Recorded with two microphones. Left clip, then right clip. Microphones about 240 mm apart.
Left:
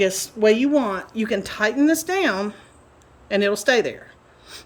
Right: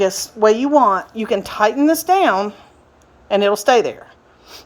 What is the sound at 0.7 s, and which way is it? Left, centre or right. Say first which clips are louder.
Speech: right 8 dB; centre.